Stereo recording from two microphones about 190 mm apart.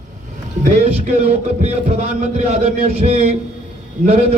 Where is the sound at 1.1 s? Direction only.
35° right (ahead or behind).